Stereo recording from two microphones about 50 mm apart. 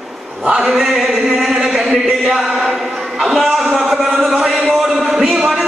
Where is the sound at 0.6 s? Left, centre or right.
Centre.